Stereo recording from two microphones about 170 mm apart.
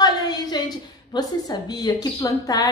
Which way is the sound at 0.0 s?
25° left (ahead or behind).